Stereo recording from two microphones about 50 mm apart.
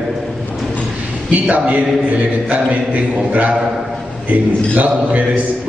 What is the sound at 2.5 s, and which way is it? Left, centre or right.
A man's voice, right.